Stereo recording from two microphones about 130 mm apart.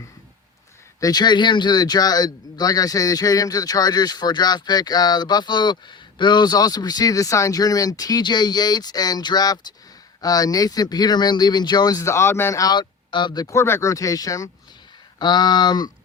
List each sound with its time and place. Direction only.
0.9 s a man's voice: 30° left (ahead or behind)